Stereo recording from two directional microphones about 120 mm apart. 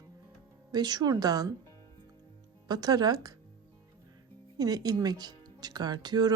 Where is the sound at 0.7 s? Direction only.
35° right (ahead or behind).